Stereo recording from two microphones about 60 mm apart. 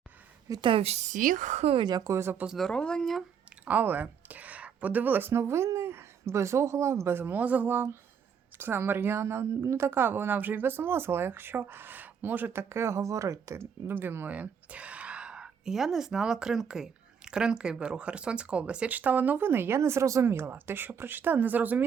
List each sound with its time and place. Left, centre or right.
0.5 s a woman's voice: right
2.1 s speech: right
2.6 s speech: centre
3.7 s speech: right
5.3 s speech: right
7.2 s speech: right
12.5 s speech: right
14.3 s speech: right
18.9 s speech: right
20.2 s speech: right